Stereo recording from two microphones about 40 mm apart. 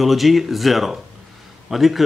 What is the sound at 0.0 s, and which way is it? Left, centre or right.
Speech, centre.